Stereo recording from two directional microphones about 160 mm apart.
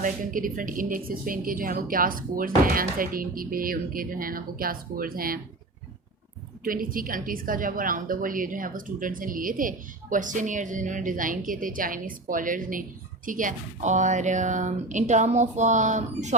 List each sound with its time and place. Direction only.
0.0 s a woman's voice: 55° right (ahead or behind)
6.7 s a woman's voice: 60° right (ahead or behind)